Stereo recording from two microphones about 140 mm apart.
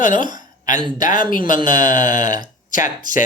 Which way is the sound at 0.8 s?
35° right (ahead or behind).